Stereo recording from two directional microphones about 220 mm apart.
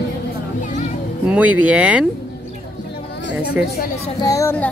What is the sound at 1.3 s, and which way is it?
Speech, 5° right (ahead or behind).